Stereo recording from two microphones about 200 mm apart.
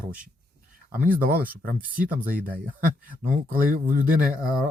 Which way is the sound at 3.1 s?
40° right (ahead or behind).